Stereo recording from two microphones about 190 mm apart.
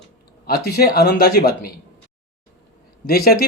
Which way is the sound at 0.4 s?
55° left (ahead or behind).